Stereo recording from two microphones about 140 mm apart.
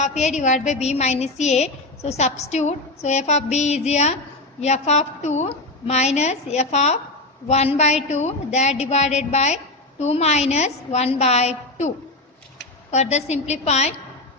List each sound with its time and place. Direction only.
0.0 s a woman's voice: 55° left (ahead or behind)
12.9 s a woman's voice: 55° left (ahead or behind)